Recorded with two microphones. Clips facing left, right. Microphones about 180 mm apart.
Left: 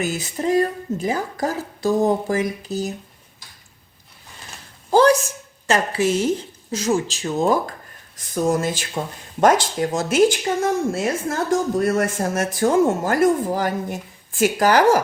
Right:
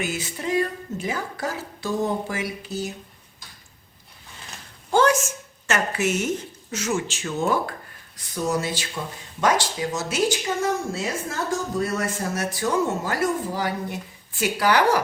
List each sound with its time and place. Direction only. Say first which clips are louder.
0.0 s speech: left 5 dB; 40° left (ahead or behind)
4.9 s speech: left 5 dB; 35° left (ahead or behind)
8.1 s a woman's voice: left 5 dB; 50° left (ahead or behind)